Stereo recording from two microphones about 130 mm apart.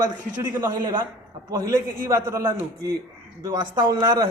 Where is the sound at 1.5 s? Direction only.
25° right (ahead or behind).